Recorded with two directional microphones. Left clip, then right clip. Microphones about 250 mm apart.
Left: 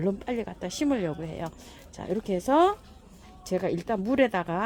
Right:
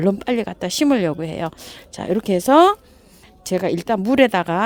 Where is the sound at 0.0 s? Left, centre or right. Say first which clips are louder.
Right 10 dB; right.